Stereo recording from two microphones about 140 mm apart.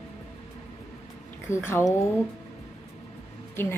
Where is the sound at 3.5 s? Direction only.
15° left (ahead or behind).